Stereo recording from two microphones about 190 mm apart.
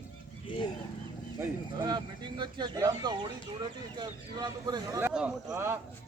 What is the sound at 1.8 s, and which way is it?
Speech, 25° right (ahead or behind).